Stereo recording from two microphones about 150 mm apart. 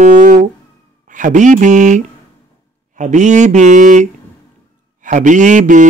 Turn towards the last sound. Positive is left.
turn(degrees=-55)  # may be behind; listen again after turning